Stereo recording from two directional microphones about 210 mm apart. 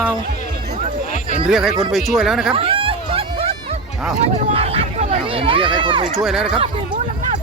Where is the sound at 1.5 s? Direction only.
Centre (ahead or behind).